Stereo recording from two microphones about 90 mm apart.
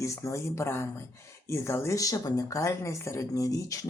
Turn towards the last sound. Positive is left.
turn(degrees=40)  # may be behind; listen again after turning